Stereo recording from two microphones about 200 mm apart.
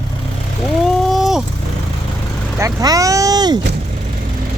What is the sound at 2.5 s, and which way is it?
Speech, 15° right (ahead or behind).